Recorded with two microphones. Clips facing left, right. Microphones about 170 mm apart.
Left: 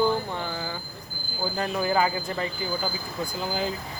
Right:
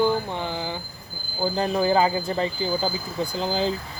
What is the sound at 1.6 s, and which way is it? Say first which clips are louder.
Speech: right 4 dB; 25° right (ahead or behind).